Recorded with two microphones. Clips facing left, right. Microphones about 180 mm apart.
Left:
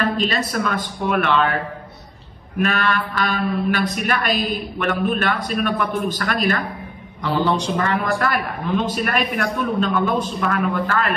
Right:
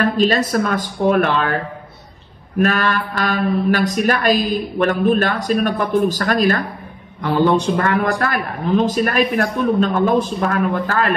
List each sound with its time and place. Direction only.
0.2 s speech: 45° right (ahead or behind)
2.6 s speech: 45° right (ahead or behind)